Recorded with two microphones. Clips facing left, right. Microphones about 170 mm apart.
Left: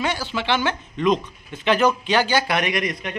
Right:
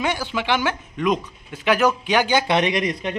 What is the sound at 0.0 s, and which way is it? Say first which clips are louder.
A man's voice: right 1 dB; 15° right (ahead or behind).